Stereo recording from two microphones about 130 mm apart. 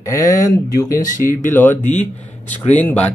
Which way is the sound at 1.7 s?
65° left (ahead or behind).